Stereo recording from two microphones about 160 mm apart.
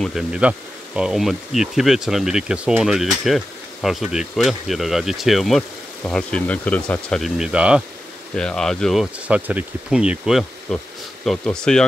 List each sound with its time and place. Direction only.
0.0 s speech: 5° right (ahead or behind)